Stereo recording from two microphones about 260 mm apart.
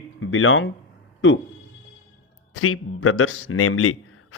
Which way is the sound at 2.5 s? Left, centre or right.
Left.